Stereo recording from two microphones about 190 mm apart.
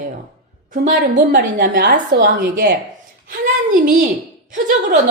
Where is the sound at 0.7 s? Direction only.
45° right (ahead or behind).